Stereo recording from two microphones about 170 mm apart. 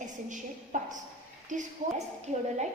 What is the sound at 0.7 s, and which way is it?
A woman's voice, 50° right (ahead or behind).